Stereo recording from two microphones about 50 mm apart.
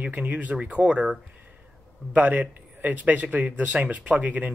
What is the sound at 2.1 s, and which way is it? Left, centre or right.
Speech, right.